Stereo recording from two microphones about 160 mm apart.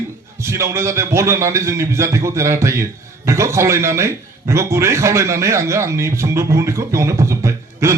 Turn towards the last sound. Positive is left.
turn(degrees=-15)  # may be behind; listen again after turning